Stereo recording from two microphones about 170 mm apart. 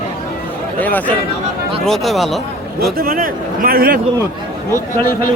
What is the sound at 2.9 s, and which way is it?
Speech, 60° right (ahead or behind).